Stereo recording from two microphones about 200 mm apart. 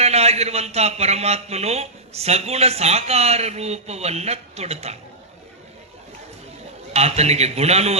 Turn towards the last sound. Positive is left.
turn(degrees=-30)  # may be behind; listen again after turning